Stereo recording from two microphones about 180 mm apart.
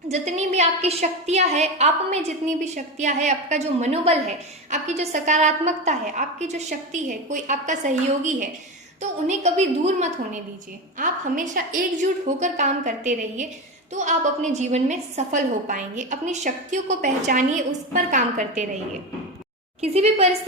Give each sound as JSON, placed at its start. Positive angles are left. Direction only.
{"t": 0.1, "sound": "a woman's voice", "side_deg": -40}
{"t": 19.8, "sound": "a woman's voice", "side_deg": -35}